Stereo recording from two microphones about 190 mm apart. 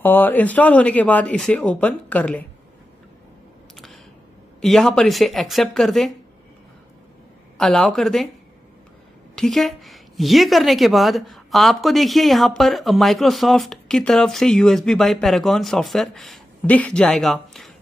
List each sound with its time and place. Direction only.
0.0 s speech: 10° left (ahead or behind)
3.7 s a sound: centre (ahead or behind)
4.6 s a woman's voice: centre (ahead or behind)
7.5 s a woman's voice: centre (ahead or behind)
9.3 s a woman's voice: centre (ahead or behind)